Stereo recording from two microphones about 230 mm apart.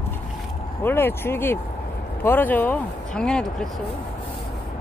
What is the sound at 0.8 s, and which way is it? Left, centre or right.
Speech, centre.